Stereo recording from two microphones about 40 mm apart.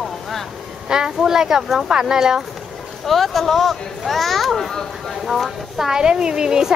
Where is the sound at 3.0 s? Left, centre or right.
Centre.